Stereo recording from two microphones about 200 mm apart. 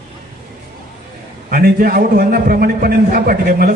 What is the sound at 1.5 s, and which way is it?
A man's voice, 50° right (ahead or behind).